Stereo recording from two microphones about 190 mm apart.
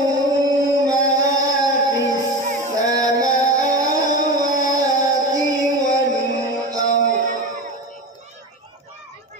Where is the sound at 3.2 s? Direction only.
40° left (ahead or behind).